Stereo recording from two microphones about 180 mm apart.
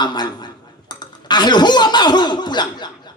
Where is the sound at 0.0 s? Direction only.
25° left (ahead or behind).